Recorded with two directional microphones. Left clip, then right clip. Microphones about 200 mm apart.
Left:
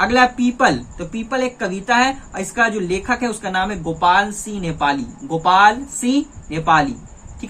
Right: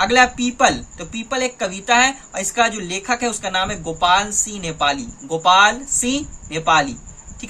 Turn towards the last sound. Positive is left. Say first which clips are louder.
# left 1 dB
turn(degrees=-45)  # may be behind; listen again after turning